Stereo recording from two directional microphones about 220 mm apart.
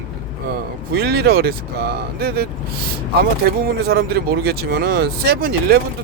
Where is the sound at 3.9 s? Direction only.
45° right (ahead or behind).